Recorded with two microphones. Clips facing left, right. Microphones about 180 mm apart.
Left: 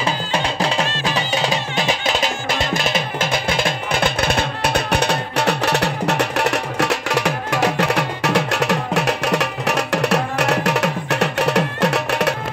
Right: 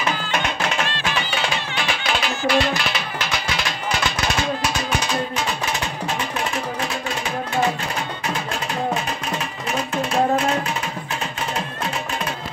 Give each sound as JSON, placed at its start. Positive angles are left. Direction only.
{"t": 0.0, "sound": "music", "side_deg": 30}